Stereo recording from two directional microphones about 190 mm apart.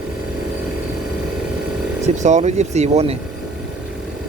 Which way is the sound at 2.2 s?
35° right (ahead or behind).